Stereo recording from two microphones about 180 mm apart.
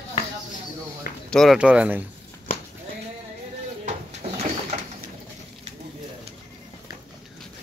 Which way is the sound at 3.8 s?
40° right (ahead or behind).